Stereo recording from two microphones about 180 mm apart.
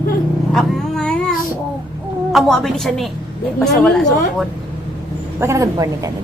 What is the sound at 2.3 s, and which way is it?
A woman's voice, centre (ahead or behind).